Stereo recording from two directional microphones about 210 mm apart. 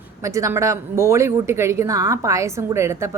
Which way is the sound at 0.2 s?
15° right (ahead or behind).